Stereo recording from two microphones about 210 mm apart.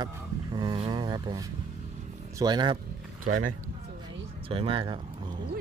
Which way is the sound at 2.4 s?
20° right (ahead or behind).